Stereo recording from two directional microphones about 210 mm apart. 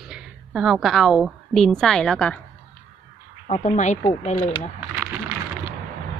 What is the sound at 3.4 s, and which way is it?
Speech, 30° left (ahead or behind).